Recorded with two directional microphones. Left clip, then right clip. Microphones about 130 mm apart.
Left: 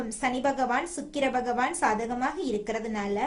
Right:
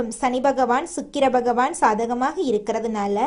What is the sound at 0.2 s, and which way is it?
A woman's voice, 35° right (ahead or behind).